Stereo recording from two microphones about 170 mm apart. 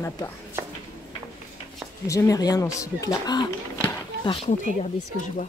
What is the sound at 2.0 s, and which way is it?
Speech, 20° left (ahead or behind).